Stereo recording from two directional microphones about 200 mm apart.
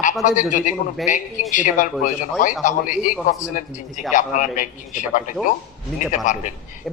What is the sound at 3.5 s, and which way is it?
Speech, 40° left (ahead or behind).